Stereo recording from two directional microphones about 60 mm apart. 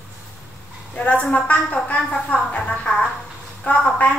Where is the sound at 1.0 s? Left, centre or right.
Left.